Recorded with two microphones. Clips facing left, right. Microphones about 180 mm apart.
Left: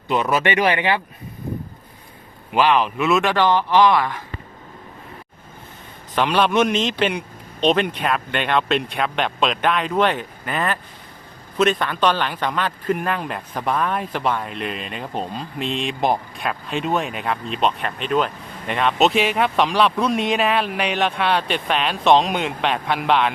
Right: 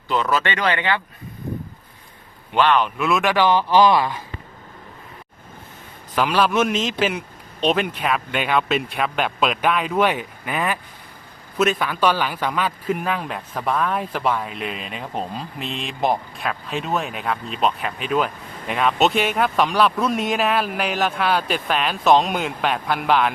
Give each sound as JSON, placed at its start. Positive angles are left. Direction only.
{"t": 0.1, "sound": "speech", "side_deg": 20}
{"t": 2.5, "sound": "a man's voice", "side_deg": 5}
{"t": 3.7, "sound": "speech", "side_deg": -30}
{"t": 6.1, "sound": "a man's voice", "side_deg": -5}